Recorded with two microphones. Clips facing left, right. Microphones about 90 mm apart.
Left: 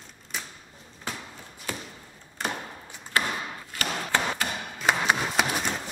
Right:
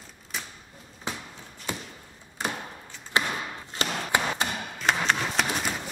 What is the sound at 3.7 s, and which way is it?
Chop, 25° right (ahead or behind).